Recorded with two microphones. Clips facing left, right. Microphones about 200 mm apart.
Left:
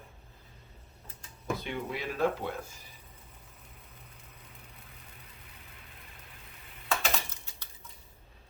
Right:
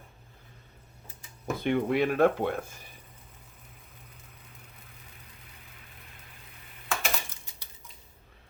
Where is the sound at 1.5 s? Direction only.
55° right (ahead or behind).